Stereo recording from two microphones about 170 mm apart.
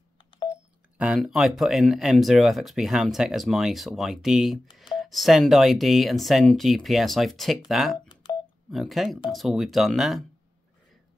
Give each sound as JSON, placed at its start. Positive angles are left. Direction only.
{"t": 0.5, "sound": "speech", "side_deg": -5}
{"t": 8.1, "sound": "telephone dialing", "side_deg": 25}
{"t": 8.6, "sound": "speech", "side_deg": 0}